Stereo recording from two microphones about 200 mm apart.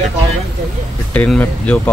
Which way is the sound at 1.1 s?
5° left (ahead or behind).